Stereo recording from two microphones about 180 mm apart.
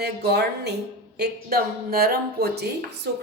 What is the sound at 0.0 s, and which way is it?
Speech, 65° right (ahead or behind).